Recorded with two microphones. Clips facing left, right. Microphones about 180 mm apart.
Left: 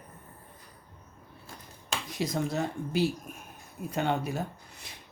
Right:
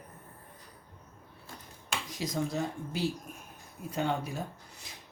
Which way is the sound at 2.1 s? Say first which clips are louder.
Left 3 dB; 60° left (ahead or behind).